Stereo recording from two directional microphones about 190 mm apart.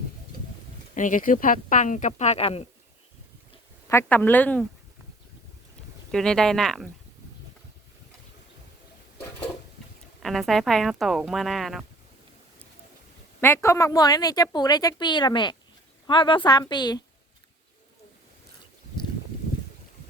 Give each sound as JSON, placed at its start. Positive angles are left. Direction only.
{"t": 0.9, "sound": "speech", "side_deg": 45}
{"t": 3.8, "sound": "speech", "side_deg": 10}
{"t": 6.1, "sound": "speech", "side_deg": 0}
{"t": 10.2, "sound": "speech", "side_deg": 0}
{"t": 13.4, "sound": "speech", "side_deg": 15}